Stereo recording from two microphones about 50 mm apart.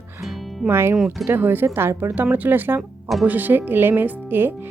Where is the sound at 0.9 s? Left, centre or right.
Centre.